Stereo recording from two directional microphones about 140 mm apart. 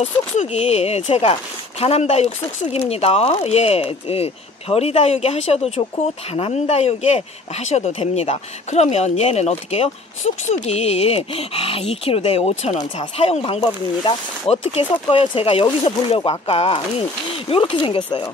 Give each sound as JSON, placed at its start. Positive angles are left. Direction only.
{"t": 0.0, "sound": "speech", "side_deg": 55}
{"t": 12.7, "sound": "speech", "side_deg": 35}